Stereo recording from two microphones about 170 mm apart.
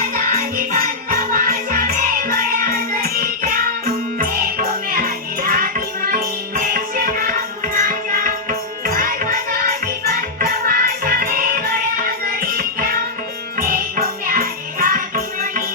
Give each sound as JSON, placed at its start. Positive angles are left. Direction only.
{"t": 0.3, "sound": "music", "side_deg": -55}